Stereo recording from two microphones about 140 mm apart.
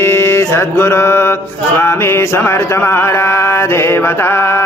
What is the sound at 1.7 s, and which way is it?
Music, 15° left (ahead or behind).